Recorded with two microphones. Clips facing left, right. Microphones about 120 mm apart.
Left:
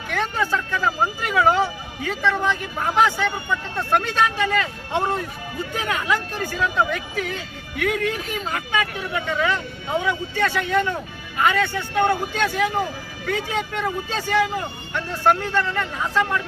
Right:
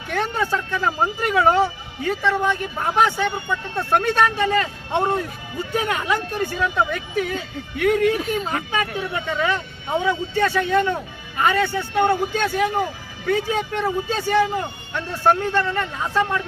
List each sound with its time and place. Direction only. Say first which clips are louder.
0.1 s speech: right 1 dB; 25° right (ahead or behind)